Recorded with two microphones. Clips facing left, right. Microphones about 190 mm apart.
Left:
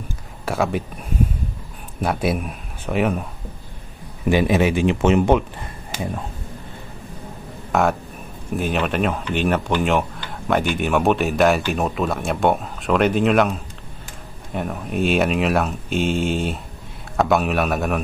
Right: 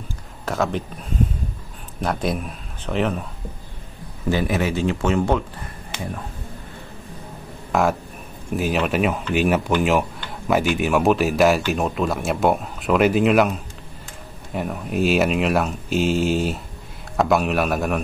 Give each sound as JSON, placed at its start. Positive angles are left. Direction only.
{"t": 0.5, "sound": "speech", "side_deg": 10}
{"t": 2.0, "sound": "a man's voice", "side_deg": 5}
{"t": 4.3, "sound": "speech", "side_deg": 20}
{"t": 7.7, "sound": "speech", "side_deg": 0}